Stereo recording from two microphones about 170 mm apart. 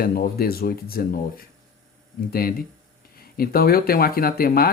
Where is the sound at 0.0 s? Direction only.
65° left (ahead or behind).